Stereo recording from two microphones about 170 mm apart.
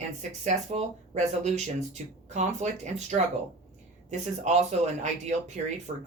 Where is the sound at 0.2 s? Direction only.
40° right (ahead or behind).